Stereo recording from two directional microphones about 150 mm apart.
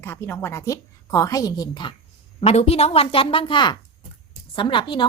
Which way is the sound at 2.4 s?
45° left (ahead or behind).